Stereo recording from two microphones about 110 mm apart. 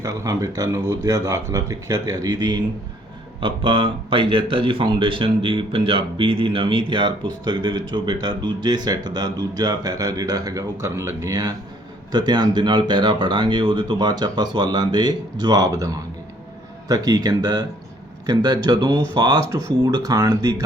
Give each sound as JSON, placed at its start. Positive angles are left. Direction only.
{"t": 0.0, "sound": "speech", "side_deg": -30}
{"t": 3.4, "sound": "speech", "side_deg": -50}
{"t": 16.9, "sound": "speech", "side_deg": -35}